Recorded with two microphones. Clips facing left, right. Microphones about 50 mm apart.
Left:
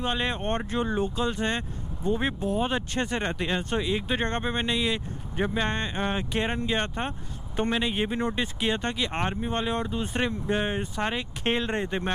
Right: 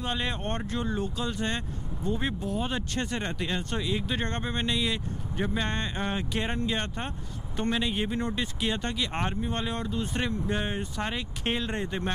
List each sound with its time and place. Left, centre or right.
0.0 s speech: centre